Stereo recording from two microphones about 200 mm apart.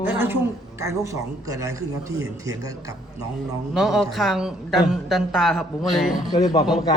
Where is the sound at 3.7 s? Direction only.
Centre (ahead or behind).